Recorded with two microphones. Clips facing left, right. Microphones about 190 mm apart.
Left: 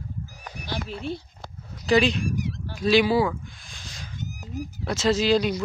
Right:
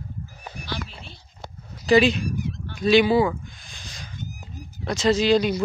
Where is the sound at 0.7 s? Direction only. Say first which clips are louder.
Left 6 dB; 50° left (ahead or behind).